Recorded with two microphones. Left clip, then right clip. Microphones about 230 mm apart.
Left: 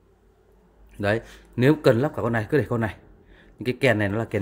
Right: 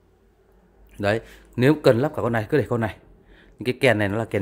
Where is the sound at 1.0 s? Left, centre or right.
Centre.